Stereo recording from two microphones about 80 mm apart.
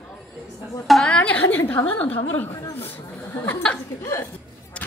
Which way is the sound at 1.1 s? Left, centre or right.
Centre.